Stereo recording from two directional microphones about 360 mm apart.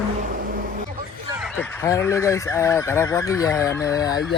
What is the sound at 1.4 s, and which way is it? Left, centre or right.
Fowl, centre.